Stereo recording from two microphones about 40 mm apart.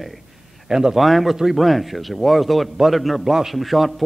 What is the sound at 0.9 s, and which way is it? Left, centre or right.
A man's voice, centre.